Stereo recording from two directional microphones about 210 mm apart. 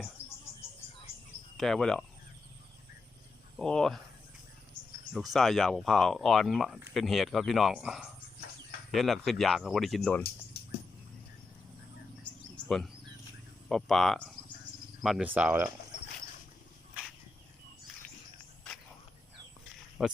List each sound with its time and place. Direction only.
1.5 s speech: centre (ahead or behind)
3.6 s speech: 5° left (ahead or behind)
5.1 s speech: centre (ahead or behind)
10.5 s a sound: 50° left (ahead or behind)
12.2 s insect: centre (ahead or behind)
13.7 s speech: centre (ahead or behind)
15.0 s cricket: 5° right (ahead or behind)
20.0 s speech: 5° right (ahead or behind)